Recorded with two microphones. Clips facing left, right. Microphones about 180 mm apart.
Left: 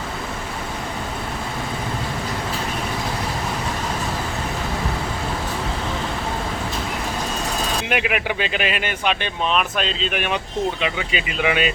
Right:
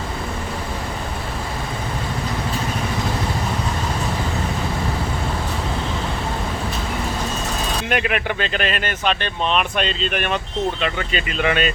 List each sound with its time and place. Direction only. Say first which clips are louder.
7.9 s speech: right 2 dB; 5° left (ahead or behind)